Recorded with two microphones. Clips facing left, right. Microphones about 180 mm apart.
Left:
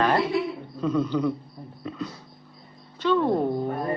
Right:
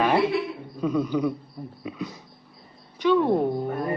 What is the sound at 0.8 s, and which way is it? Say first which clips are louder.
Speech: even; 10° right (ahead or behind).